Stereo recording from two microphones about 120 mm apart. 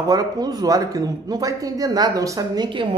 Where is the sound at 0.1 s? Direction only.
30° right (ahead or behind).